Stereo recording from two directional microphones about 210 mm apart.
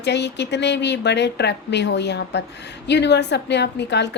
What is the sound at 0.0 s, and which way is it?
A woman's voice, 55° left (ahead or behind).